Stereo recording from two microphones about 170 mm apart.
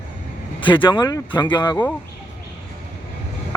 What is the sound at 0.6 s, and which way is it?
Speech, 30° left (ahead or behind).